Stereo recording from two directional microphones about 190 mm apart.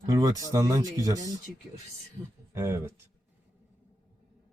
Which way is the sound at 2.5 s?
15° right (ahead or behind).